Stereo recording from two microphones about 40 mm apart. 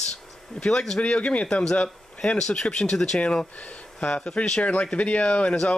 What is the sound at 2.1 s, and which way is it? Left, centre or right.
Speech, centre.